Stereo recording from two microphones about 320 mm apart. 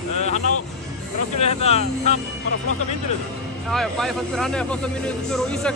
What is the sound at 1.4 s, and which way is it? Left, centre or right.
Speech, centre.